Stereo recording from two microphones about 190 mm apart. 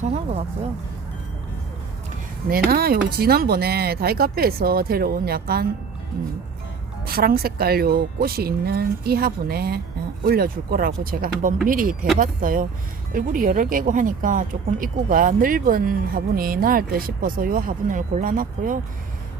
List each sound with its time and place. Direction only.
0.0 s speech: 35° right (ahead or behind)
2.5 s a woman's voice: 55° right (ahead or behind)
7.0 s a woman's voice: 50° right (ahead or behind)